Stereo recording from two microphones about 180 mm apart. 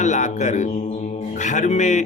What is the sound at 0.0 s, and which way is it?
A man's voice, 40° left (ahead or behind).